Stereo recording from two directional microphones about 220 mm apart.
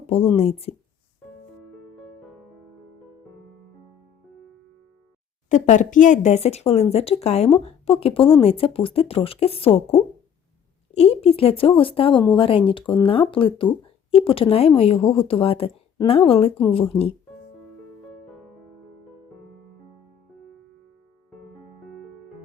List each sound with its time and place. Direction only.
0.3 s speech: 25° left (ahead or behind)
5.5 s speech: 35° left (ahead or behind)